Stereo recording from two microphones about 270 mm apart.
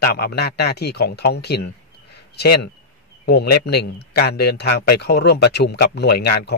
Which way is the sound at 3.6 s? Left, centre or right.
Left.